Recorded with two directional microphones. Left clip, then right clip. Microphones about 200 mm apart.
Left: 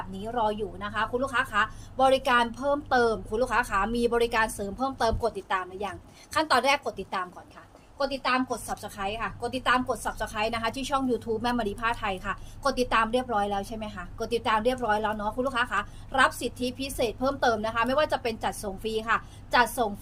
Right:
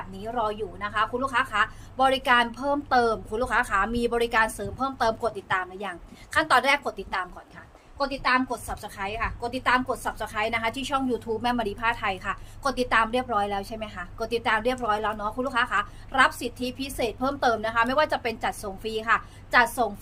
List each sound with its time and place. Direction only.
0.1 s a woman's voice: 20° right (ahead or behind)